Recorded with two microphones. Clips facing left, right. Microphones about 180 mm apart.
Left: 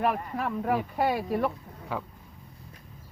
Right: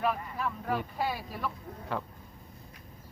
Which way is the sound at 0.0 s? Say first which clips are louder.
Left 3 dB; 60° left (ahead or behind).